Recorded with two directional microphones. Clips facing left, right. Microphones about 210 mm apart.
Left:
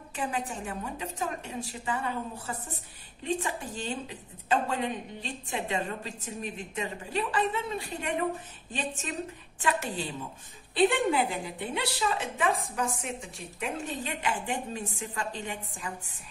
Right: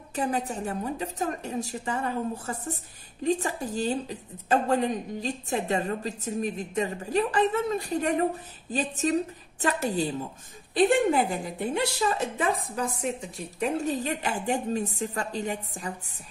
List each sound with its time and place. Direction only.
0.1 s a woman's voice: 40° right (ahead or behind)